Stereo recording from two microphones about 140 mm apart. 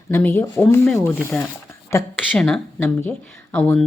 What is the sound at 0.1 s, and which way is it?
Speech, 15° left (ahead or behind).